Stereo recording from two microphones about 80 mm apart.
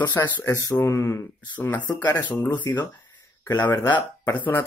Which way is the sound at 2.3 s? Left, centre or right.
Left.